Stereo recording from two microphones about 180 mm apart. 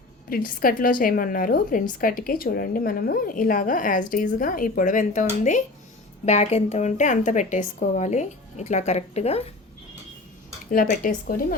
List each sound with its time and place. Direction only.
0.3 s a woman's voice: 55° left (ahead or behind); by 9.5 s 35° left (ahead or behind)
10.7 s a woman's voice: 50° left (ahead or behind)